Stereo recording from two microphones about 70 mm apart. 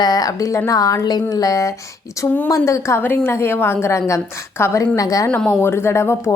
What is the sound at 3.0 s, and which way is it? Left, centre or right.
A woman's voice, left.